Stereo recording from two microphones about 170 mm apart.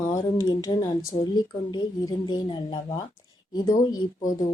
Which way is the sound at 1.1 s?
25° left (ahead or behind).